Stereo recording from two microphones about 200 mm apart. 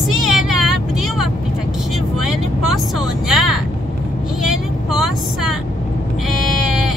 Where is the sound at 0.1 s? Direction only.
Centre (ahead or behind).